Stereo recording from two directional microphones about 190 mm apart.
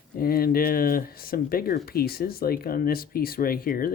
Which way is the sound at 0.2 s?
50° left (ahead or behind).